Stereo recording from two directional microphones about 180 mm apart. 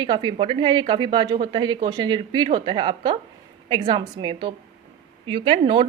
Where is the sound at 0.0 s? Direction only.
25° right (ahead or behind).